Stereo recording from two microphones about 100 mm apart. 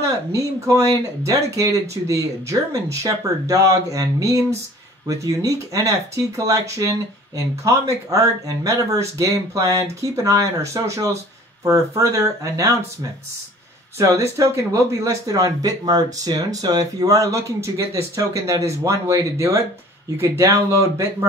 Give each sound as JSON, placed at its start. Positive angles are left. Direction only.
{"t": 0.0, "sound": "speech", "side_deg": -35}
{"t": 13.9, "sound": "speech", "side_deg": -30}